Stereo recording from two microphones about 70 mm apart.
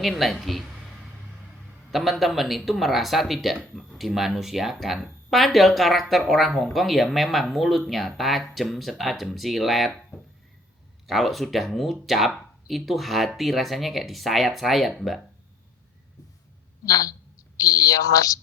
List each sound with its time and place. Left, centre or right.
0.0 s speech: centre
1.9 s speech: centre
16.8 s a woman's voice: left